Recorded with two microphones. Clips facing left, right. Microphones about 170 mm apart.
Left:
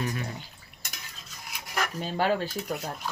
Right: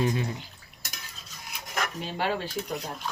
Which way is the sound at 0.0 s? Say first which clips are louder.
Right 5 dB; 25° right (ahead or behind).